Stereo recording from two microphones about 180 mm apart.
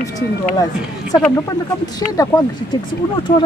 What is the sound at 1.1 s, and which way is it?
Speech, 20° left (ahead or behind).